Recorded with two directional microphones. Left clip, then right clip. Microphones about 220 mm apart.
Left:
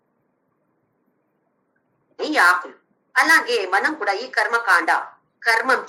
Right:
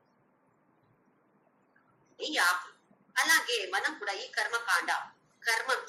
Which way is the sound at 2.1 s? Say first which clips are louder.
Left 12 dB; 35° left (ahead or behind).